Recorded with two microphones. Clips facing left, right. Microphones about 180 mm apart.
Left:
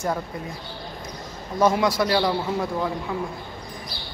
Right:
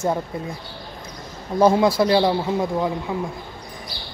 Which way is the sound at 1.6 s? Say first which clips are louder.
Right 4 dB; 25° right (ahead or behind).